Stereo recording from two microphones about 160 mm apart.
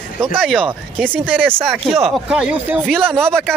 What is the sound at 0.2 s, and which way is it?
Speech, 10° right (ahead or behind).